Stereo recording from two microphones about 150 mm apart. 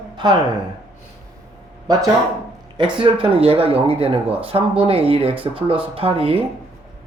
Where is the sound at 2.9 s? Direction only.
35° right (ahead or behind).